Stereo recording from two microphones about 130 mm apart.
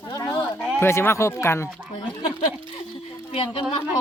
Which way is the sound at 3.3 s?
45° left (ahead or behind).